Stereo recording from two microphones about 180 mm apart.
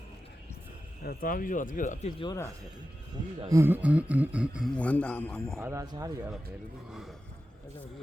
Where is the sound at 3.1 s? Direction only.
20° right (ahead or behind).